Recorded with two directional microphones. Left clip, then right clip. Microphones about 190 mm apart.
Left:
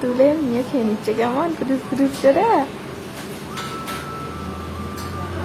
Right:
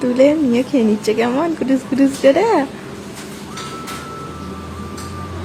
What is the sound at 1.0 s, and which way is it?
Speech, 30° right (ahead or behind).